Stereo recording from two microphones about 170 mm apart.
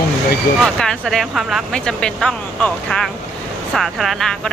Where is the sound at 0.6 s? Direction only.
5° left (ahead or behind).